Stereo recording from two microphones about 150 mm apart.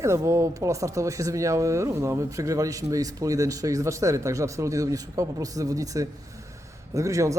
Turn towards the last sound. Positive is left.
turn(degrees=-20)  # may be behind; listen again after turning